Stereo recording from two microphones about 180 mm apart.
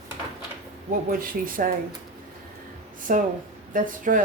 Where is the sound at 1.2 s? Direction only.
50° right (ahead or behind).